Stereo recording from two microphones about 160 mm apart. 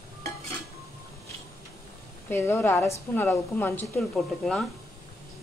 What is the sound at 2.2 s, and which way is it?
A woman's voice, 15° left (ahead or behind).